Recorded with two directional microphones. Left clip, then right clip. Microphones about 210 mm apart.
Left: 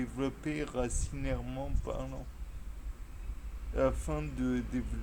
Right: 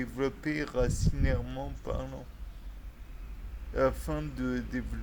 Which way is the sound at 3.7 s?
20° right (ahead or behind).